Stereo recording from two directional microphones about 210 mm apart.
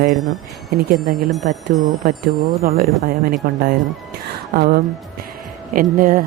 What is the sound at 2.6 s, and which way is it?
Speech, 45° right (ahead or behind).